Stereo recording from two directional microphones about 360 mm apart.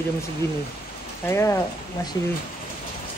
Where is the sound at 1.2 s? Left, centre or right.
Centre.